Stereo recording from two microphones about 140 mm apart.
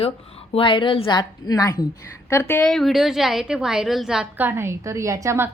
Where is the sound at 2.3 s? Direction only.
15° left (ahead or behind); by 5.5 s 20° right (ahead or behind).